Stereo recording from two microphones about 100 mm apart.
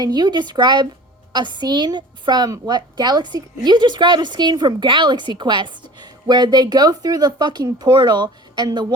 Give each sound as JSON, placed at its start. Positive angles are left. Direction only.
{"t": 0.0, "sound": "a woman's voice", "side_deg": -45}